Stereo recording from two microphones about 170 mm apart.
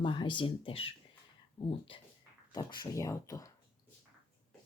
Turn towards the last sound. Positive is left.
turn(degrees=20)  # may be behind; listen again after turning